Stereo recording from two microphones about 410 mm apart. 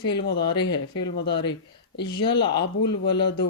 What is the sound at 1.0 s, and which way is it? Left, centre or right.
Speech, left.